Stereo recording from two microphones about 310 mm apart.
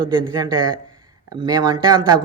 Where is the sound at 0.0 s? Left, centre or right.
Centre.